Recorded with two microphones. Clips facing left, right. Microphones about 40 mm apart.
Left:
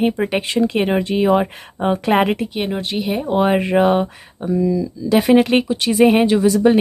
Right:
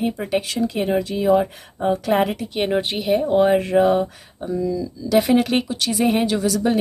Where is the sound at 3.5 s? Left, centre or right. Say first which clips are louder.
Left 1 dB; left.